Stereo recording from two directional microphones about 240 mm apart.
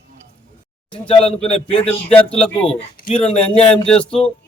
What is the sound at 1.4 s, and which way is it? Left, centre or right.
Speech, left.